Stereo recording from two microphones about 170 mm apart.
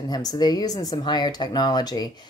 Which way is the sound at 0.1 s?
20° left (ahead or behind).